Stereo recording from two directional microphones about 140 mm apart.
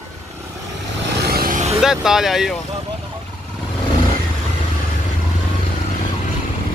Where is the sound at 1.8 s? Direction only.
5° right (ahead or behind).